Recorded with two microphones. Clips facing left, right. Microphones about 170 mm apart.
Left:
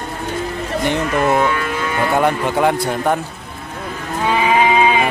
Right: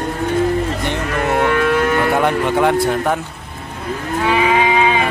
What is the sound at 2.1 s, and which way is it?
Speech, centre (ahead or behind).